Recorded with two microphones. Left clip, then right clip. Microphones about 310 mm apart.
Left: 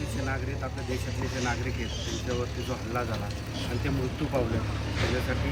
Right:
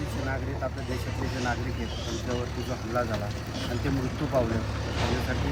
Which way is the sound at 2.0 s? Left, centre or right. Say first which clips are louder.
Right 1 dB; right.